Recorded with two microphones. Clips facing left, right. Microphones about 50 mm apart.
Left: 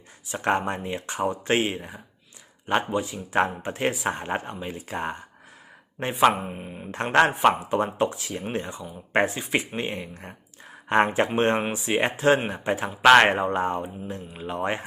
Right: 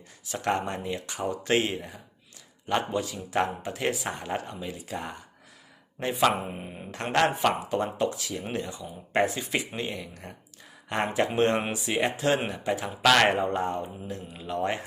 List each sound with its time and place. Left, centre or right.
0.3 s a man's voice: left
6.0 s speech: left
6.4 s speech: centre
6.9 s a man's voice: left